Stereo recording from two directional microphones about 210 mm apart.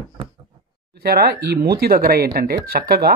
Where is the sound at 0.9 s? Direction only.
45° right (ahead or behind).